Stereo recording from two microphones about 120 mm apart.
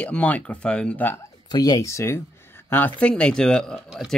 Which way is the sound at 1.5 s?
35° left (ahead or behind).